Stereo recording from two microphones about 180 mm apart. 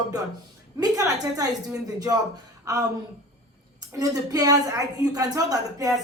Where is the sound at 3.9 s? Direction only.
20° right (ahead or behind).